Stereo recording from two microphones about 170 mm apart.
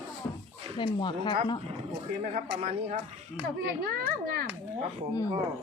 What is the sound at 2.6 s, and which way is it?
Speech, 40° right (ahead or behind).